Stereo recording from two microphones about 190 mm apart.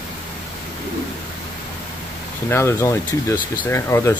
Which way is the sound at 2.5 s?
10° left (ahead or behind).